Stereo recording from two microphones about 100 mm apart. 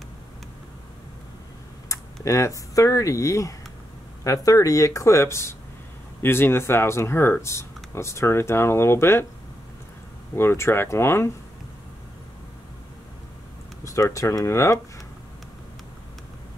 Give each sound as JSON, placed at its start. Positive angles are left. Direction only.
{"t": 2.2, "sound": "speech", "side_deg": 30}
{"t": 10.3, "sound": "speech", "side_deg": 25}
{"t": 13.8, "sound": "speech", "side_deg": 30}